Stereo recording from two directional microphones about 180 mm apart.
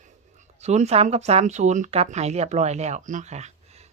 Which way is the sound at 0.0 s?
40° right (ahead or behind).